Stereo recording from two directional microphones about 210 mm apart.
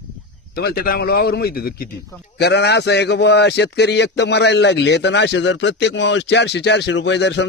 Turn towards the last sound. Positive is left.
turn(degrees=55)  # may be behind; listen again after turning